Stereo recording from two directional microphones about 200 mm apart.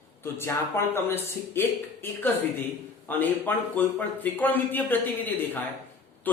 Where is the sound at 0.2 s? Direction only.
10° left (ahead or behind).